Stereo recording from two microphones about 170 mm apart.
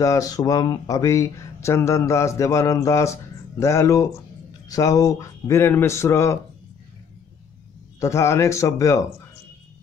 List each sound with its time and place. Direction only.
0.0 s speech: 20° left (ahead or behind)
8.0 s speech: 15° left (ahead or behind)